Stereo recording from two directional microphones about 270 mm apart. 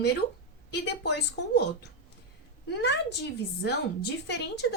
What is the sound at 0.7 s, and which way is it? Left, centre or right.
A woman's voice, left.